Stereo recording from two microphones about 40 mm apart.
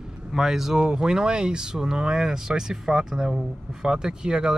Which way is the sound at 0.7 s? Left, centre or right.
Centre.